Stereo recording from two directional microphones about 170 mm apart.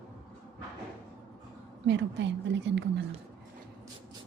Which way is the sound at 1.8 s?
90° right.